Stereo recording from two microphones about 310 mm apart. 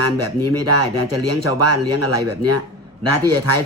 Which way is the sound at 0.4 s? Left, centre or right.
Right.